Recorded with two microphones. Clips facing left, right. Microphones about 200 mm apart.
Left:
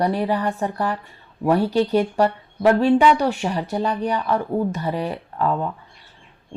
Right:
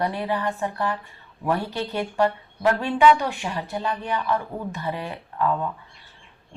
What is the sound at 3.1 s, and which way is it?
A woman's voice, 40° left (ahead or behind).